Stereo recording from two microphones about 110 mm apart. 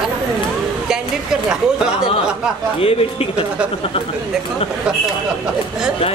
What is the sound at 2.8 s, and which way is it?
Speech, 60° left (ahead or behind).